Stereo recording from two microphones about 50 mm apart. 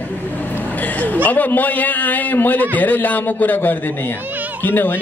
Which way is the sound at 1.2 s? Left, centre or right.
Left.